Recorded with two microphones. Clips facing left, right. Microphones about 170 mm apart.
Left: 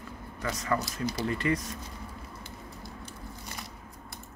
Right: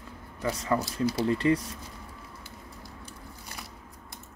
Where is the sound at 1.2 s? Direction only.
25° right (ahead or behind).